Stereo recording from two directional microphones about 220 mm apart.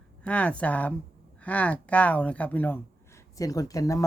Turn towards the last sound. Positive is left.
turn(degrees=15)  # may be behind; listen again after turning